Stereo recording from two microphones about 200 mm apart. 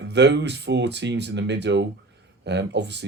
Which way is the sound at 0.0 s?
60° right (ahead or behind).